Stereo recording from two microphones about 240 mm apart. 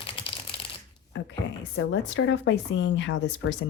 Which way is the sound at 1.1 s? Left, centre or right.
Left.